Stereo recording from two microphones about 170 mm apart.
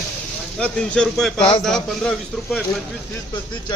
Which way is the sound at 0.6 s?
5° left (ahead or behind).